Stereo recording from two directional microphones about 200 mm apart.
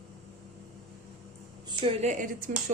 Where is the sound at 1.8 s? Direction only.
30° right (ahead or behind).